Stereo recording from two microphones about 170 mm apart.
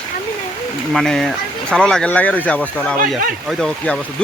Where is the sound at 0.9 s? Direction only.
Centre (ahead or behind).